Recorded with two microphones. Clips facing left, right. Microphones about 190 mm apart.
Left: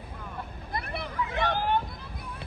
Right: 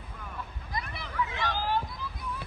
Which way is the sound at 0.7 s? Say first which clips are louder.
Left 4 dB; 60° left (ahead or behind).